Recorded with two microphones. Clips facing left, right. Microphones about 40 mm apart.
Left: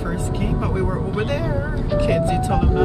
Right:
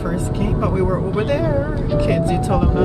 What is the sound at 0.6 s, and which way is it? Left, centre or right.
Speech, centre.